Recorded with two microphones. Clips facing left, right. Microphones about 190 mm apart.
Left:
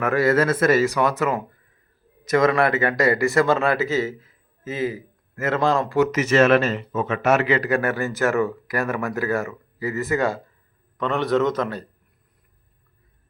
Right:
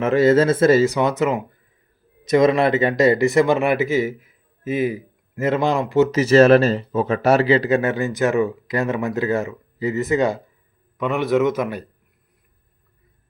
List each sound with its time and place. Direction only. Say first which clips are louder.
0.0 s speech: right 4 dB; 25° right (ahead or behind)
10.9 s a man's voice: right 2 dB; 10° right (ahead or behind)